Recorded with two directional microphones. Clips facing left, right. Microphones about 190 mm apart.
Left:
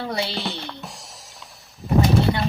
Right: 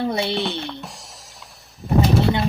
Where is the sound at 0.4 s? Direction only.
Centre (ahead or behind).